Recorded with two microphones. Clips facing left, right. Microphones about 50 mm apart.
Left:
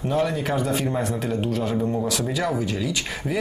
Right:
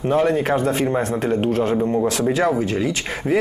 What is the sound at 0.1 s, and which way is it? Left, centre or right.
Speech, right.